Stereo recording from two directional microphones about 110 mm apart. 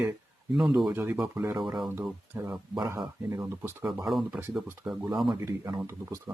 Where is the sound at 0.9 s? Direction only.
20° right (ahead or behind).